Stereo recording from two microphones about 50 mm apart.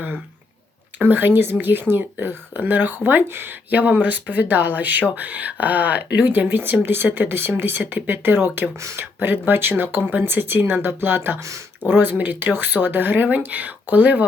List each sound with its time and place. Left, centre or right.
0.9 s speech: right